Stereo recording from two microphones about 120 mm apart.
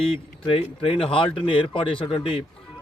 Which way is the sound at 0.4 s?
50° left (ahead or behind).